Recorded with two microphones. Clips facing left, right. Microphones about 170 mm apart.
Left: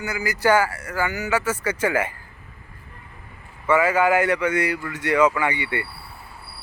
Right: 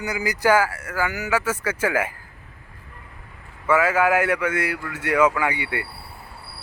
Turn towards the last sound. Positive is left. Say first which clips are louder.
# left 1 dB
turn(degrees=-10)  # may be behind; listen again after turning